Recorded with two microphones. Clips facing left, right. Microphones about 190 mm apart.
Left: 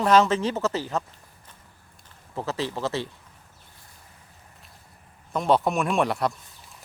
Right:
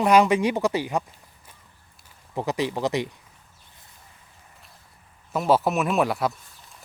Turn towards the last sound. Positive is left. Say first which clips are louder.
# right 1 dB
turn(degrees=-5)  # may be behind; listen again after turning